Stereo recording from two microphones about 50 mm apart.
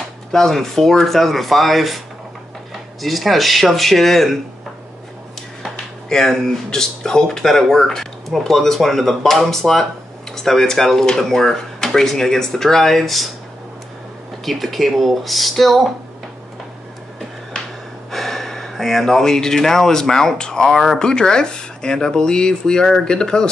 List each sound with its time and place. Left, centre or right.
0.3 s speech: centre
3.0 s speech: centre
6.0 s speech: centre
14.4 s speech: centre
18.1 s speech: centre
21.0 s speech: centre